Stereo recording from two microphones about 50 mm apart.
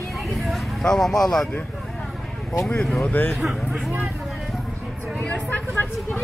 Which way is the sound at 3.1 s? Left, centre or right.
Left.